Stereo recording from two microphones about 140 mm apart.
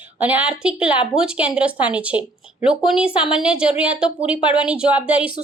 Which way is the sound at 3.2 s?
5° right (ahead or behind).